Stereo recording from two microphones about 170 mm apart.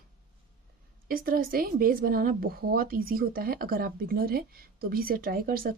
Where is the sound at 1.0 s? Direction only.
60° right (ahead or behind).